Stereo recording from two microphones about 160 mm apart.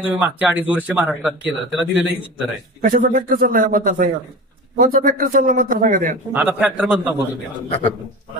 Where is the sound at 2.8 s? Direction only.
65° right (ahead or behind).